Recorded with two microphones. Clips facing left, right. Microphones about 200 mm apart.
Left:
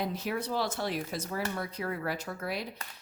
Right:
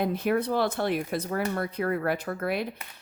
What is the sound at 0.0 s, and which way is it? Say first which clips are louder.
Speech: right 7 dB; 55° right (ahead or behind).